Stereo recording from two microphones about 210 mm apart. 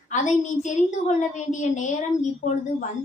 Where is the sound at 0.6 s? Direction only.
35° left (ahead or behind).